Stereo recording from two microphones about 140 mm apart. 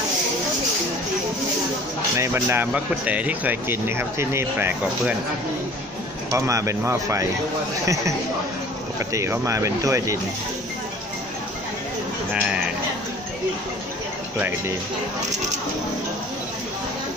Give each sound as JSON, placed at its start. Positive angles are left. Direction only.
{"t": 2.1, "sound": "speech", "side_deg": -20}
{"t": 6.3, "sound": "speech", "side_deg": -20}
{"t": 9.1, "sound": "speech", "side_deg": -20}